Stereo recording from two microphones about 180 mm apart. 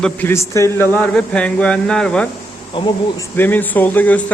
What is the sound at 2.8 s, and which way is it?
Speech, 25° left (ahead or behind).